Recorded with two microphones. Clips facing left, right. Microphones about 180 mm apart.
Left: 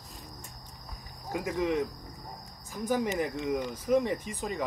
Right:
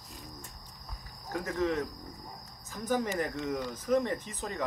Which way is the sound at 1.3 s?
10° left (ahead or behind).